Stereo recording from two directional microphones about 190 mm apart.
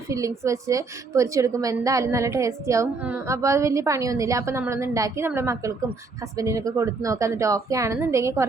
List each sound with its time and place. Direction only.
0.1 s a woman's voice: 15° right (ahead or behind)